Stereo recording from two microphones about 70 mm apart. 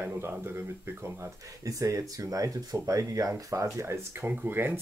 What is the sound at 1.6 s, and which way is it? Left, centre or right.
Speech, right.